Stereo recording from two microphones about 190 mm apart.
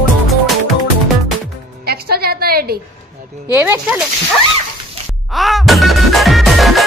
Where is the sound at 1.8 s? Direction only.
55° right (ahead or behind).